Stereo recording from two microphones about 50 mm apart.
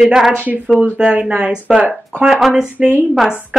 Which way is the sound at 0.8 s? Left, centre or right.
Right.